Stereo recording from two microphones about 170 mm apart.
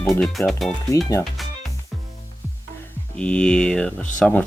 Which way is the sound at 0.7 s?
20° left (ahead or behind).